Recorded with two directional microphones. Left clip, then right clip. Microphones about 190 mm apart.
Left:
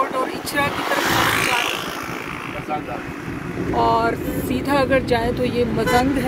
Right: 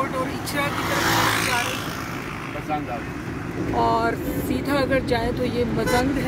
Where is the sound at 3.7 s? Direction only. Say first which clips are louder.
Left 3 dB; 10° left (ahead or behind).